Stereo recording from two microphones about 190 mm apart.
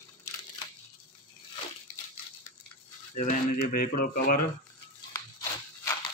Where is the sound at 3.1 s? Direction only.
40° left (ahead or behind).